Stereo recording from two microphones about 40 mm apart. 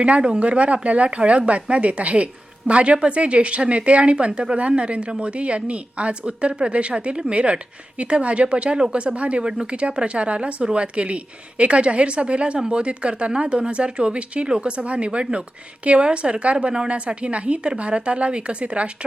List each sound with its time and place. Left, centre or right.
0.0 s speech: right